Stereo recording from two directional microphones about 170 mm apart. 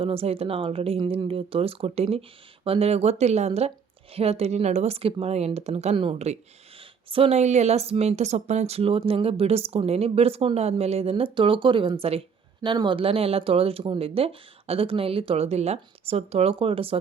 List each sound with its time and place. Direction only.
0.0 s speech: 35° right (ahead or behind)